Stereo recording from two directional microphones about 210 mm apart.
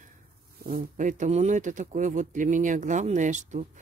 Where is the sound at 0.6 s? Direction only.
40° right (ahead or behind).